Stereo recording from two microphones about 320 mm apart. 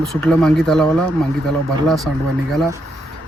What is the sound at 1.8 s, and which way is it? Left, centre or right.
Speech, centre.